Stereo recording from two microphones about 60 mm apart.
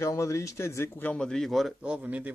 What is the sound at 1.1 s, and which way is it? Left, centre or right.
Speech, centre.